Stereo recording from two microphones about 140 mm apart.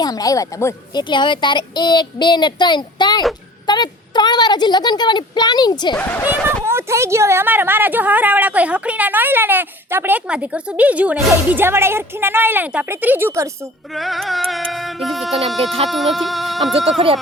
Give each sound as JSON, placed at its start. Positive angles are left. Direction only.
{"t": 0.0, "sound": "a woman's voice", "side_deg": 25}
{"t": 0.9, "sound": "a woman's voice", "side_deg": 35}
{"t": 6.4, "sound": "a woman's voice", "side_deg": -20}
{"t": 13.9, "sound": "music", "side_deg": 0}